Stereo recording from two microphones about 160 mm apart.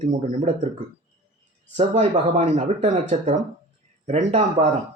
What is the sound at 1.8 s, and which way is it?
Speech, 45° right (ahead or behind).